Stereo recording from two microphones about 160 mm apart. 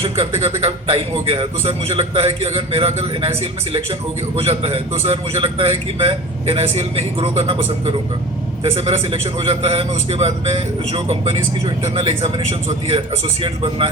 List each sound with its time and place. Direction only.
0.0 s speech: 40° right (ahead or behind)